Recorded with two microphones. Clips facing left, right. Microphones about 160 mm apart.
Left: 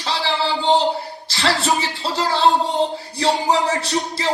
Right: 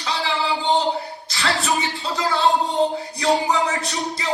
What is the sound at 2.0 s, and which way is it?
Speech, 40° left (ahead or behind).